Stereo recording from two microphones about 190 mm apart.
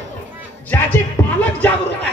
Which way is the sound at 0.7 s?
10° left (ahead or behind).